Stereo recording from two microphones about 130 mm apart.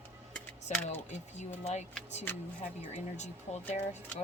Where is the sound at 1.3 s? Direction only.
60° left (ahead or behind).